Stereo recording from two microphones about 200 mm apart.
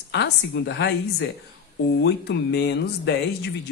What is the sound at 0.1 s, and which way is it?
Speech, 60° left (ahead or behind).